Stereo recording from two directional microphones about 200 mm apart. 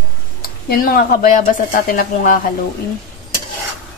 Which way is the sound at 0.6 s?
45° left (ahead or behind).